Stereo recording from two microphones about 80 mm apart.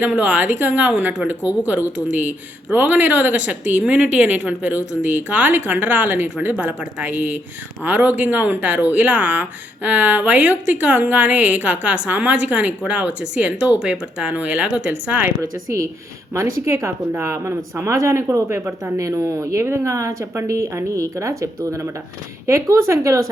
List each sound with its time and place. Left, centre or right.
0.2 s speech: right
15.4 s a woman's voice: right